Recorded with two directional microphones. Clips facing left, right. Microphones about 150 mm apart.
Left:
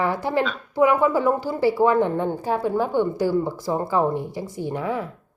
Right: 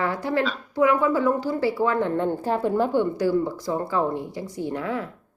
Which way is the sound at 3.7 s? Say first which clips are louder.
Left 3 dB; 20° left (ahead or behind).